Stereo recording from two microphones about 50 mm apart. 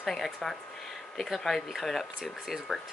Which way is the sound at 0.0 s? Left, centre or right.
Centre.